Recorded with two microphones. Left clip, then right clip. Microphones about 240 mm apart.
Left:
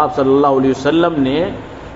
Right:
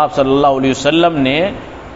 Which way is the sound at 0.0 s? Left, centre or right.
Right.